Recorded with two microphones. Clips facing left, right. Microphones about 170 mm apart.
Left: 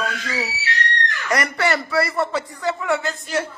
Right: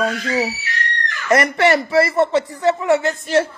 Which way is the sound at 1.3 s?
20° right (ahead or behind).